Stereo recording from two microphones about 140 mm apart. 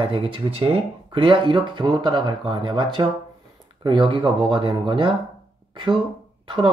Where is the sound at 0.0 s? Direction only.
40° right (ahead or behind).